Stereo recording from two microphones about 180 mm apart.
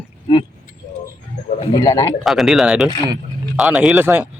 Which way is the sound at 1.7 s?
20° left (ahead or behind).